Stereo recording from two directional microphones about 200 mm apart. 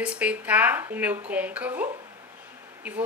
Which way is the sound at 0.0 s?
5° right (ahead or behind).